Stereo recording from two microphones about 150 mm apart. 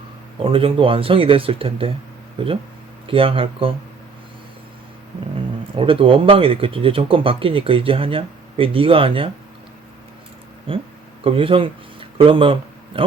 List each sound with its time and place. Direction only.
0.4 s speech: 35° right (ahead or behind)
5.7 s speech: 35° right (ahead or behind)
10.7 s speech: 35° right (ahead or behind)